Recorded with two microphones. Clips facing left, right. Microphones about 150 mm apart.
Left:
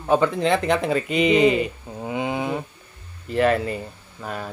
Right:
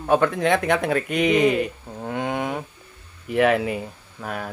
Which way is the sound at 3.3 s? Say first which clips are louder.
Right 1 dB; 10° right (ahead or behind).